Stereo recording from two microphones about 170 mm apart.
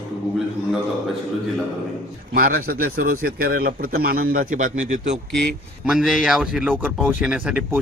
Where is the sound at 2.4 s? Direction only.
55° right (ahead or behind).